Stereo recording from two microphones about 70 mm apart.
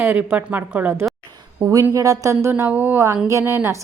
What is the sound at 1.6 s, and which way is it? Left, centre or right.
Speech, right.